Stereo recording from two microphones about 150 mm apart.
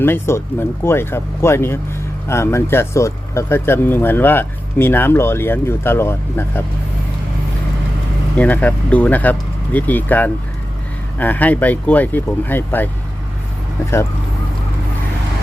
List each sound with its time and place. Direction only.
0.0 s speech: 15° left (ahead or behind)
8.4 s speech: 10° left (ahead or behind)